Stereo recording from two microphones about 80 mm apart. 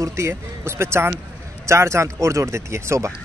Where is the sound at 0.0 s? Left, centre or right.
Right.